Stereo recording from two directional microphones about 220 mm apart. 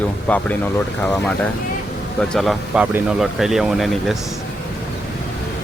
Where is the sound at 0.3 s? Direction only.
5° left (ahead or behind).